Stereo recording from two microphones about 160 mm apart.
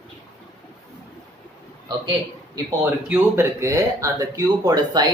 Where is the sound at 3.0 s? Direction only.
10° right (ahead or behind).